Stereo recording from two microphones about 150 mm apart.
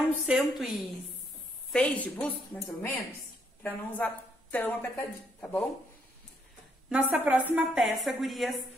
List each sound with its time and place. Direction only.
0.3 s a woman's voice: centre (ahead or behind)
6.9 s a woman's voice: 5° right (ahead or behind)